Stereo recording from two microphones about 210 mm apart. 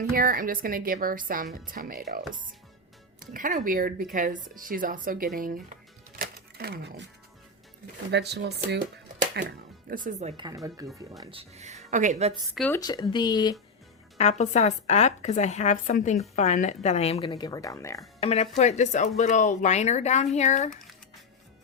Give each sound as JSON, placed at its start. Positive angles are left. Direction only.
{"t": 0.0, "sound": "speech", "side_deg": -40}
{"t": 6.1, "sound": "a sound", "side_deg": -45}
{"t": 8.1, "sound": "speech", "side_deg": -55}
{"t": 9.9, "sound": "speech", "side_deg": -40}
{"t": 10.4, "sound": "speech", "side_deg": -15}
{"t": 12.5, "sound": "speech", "side_deg": 5}
{"t": 12.8, "sound": "speech", "side_deg": 20}
{"t": 14.2, "sound": "speech", "side_deg": 30}
{"t": 18.2, "sound": "speech", "side_deg": 30}